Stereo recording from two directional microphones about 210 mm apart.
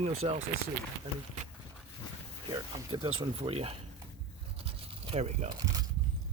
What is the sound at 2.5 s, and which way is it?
Speech, 20° right (ahead or behind).